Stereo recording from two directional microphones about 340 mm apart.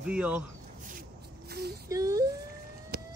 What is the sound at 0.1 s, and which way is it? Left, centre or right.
Speech, centre.